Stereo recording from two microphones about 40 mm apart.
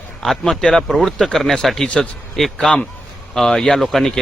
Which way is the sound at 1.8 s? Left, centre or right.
Left.